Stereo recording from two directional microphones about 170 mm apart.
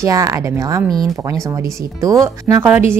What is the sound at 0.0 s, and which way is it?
Speech, 20° right (ahead or behind).